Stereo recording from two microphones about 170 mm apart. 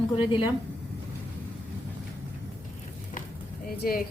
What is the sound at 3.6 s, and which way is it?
Speech, 60° left (ahead or behind).